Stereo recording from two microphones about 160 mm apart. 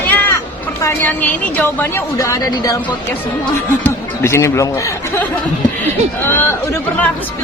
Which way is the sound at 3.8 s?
15° left (ahead or behind).